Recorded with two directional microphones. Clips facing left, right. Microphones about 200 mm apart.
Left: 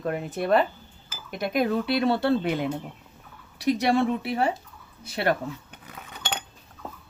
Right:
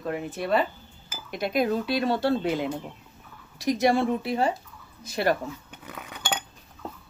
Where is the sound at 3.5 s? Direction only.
60° left (ahead or behind).